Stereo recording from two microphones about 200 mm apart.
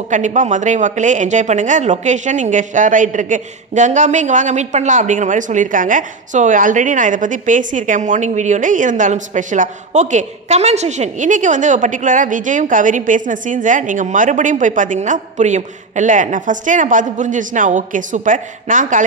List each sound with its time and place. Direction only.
0.1 s a woman's voice: 40° right (ahead or behind)